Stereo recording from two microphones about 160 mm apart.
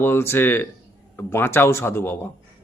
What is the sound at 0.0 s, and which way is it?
A man's voice, 15° left (ahead or behind).